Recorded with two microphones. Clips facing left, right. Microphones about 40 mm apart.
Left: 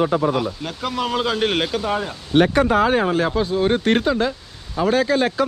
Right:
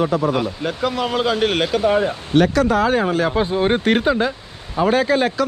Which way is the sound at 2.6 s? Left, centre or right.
Centre.